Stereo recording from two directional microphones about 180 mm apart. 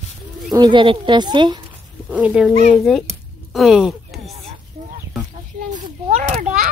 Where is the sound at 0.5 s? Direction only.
25° right (ahead or behind).